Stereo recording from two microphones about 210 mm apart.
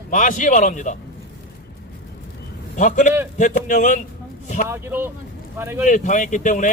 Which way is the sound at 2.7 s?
35° left (ahead or behind).